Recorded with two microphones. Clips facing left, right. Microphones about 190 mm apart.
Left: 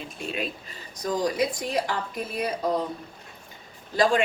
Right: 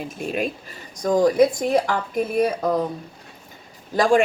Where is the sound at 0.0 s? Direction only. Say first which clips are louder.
Right 6 dB; 45° right (ahead or behind).